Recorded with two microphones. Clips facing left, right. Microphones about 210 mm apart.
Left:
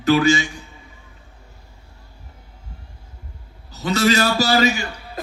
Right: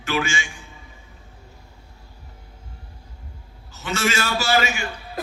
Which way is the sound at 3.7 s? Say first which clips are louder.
Left 7 dB; 40° left (ahead or behind).